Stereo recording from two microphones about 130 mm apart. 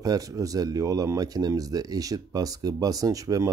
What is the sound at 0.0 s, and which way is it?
Speech, 25° right (ahead or behind).